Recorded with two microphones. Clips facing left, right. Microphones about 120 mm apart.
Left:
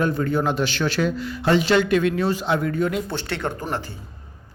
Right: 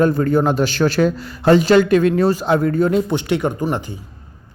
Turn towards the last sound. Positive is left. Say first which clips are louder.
# right 6 dB
turn(degrees=-15)  # may be behind; listen again after turning